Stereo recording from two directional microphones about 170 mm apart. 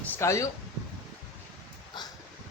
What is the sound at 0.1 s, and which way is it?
Speech, 15° left (ahead or behind).